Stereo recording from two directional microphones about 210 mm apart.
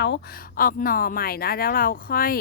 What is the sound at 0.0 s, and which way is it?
Speech, 50° left (ahead or behind).